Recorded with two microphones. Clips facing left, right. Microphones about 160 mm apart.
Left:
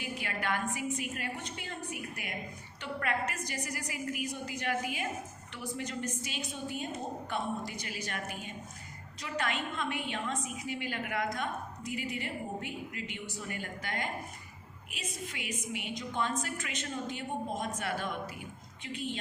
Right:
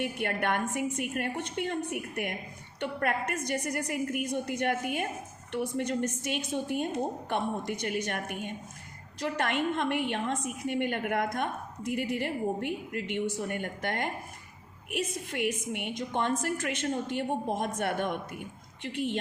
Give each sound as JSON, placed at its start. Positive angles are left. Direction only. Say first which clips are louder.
{"t": 0.0, "sound": "a woman's voice", "louder": "right 6 dB", "side_deg": -60}